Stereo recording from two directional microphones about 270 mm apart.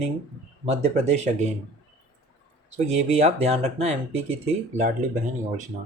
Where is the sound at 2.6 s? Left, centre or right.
Right.